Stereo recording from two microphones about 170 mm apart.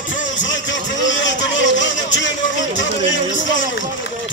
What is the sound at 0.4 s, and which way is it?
Vehicle, 90° left.